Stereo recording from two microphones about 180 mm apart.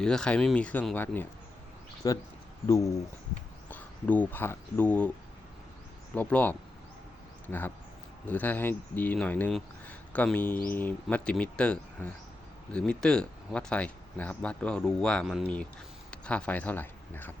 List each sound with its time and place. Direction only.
0.0 s speech: 5° left (ahead or behind)
2.0 s speech: 20° left (ahead or behind)
6.1 s speech: 10° left (ahead or behind)